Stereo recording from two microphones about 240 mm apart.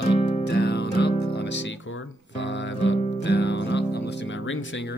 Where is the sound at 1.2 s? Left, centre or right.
Left.